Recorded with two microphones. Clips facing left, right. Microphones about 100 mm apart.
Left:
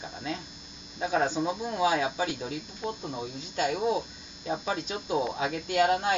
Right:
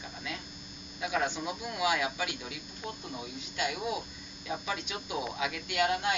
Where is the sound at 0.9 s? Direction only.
35° left (ahead or behind).